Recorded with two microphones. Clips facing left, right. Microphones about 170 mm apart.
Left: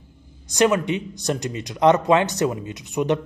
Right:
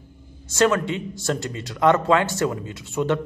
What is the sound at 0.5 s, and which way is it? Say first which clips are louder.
A man's voice: left 1 dB; 15° left (ahead or behind).